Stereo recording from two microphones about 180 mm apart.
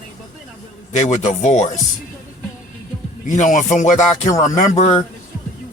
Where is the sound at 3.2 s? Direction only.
45° left (ahead or behind).